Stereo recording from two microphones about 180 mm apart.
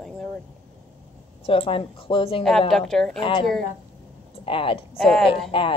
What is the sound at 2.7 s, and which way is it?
Speech, centre (ahead or behind).